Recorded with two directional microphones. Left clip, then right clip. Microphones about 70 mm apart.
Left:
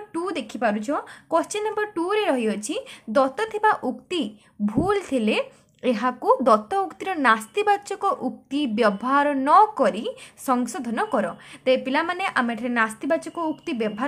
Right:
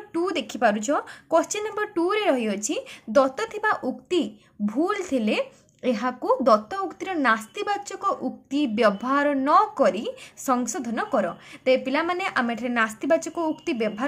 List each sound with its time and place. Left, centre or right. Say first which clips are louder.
0.1 s a sound: right 2 dB; centre
0.5 s speech: right 2 dB; centre
1.3 s speech: even; centre; by 8.3 s left
8.5 s speech: even; left
11.6 s a woman's voice: left 1 dB; centre